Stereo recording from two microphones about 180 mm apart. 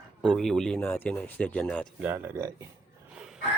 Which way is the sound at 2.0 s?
15° right (ahead or behind).